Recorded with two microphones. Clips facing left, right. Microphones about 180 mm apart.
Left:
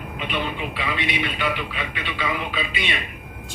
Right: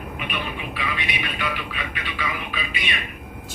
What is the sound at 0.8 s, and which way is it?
A man's voice, 25° left (ahead or behind).